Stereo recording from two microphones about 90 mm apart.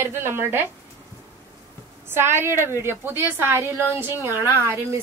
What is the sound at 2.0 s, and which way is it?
A woman's voice, 25° right (ahead or behind).